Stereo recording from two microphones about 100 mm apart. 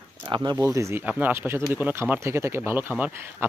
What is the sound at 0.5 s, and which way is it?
Speech, 30° right (ahead or behind).